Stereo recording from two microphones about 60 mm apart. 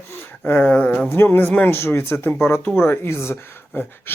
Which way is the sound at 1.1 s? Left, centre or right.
Left.